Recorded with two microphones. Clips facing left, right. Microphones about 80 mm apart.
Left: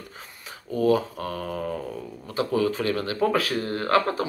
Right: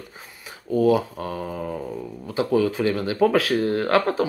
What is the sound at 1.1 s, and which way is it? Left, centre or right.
Speech, right.